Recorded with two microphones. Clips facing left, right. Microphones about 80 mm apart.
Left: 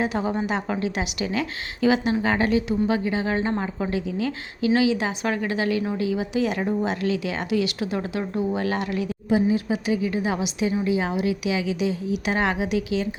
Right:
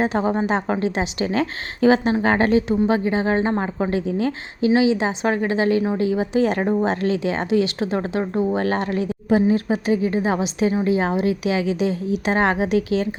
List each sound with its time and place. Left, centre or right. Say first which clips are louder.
0.0 s a woman's voice: right 4 dB; right